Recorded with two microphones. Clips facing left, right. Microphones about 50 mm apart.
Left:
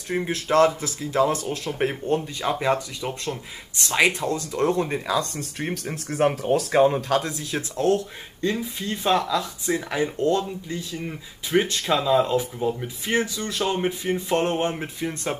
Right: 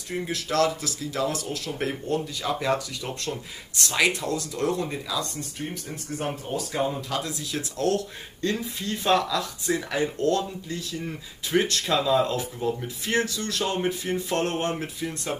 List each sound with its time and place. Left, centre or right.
0.2 s speech: left
3.0 s speech: centre
3.9 s speech: left
5.0 s speech: left
7.2 s speech: left